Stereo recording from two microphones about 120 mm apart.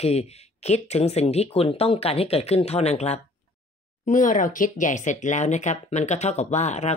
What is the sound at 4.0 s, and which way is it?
Speech, 90° left.